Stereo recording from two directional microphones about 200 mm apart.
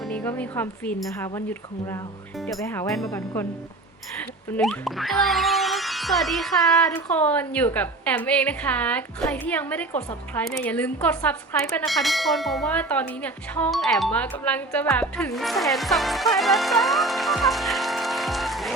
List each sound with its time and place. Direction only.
0.0 s speech: 5° left (ahead or behind)
2.6 s a woman's voice: 15° left (ahead or behind)
4.2 s a woman's voice: 5° left (ahead or behind)
11.8 s bell: centre (ahead or behind)
16.4 s music: centre (ahead or behind)